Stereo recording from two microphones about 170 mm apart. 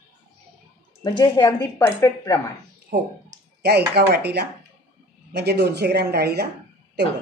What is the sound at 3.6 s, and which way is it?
Speech, 70° right (ahead or behind).